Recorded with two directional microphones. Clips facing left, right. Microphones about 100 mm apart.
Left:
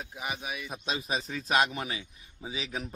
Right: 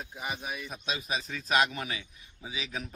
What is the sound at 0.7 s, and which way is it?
A man's voice, 30° left (ahead or behind).